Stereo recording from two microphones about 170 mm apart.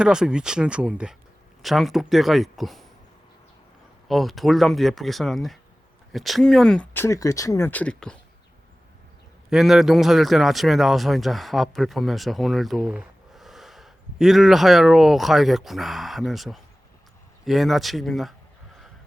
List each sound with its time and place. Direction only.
0.0 s speech: 5° right (ahead or behind)
4.1 s speech: centre (ahead or behind)
9.5 s speech: centre (ahead or behind)